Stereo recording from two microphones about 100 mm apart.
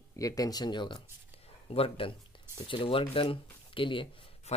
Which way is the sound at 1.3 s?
75° left (ahead or behind).